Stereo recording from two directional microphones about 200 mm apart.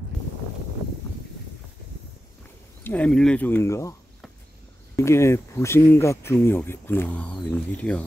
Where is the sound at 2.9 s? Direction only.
5° left (ahead or behind).